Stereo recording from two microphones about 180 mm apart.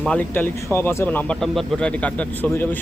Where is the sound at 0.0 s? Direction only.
5° left (ahead or behind).